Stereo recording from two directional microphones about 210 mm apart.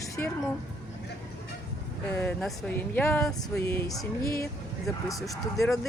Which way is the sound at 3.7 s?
15° left (ahead or behind).